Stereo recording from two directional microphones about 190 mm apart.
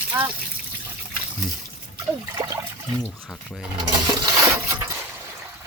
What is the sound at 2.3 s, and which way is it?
Water, 20° right (ahead or behind).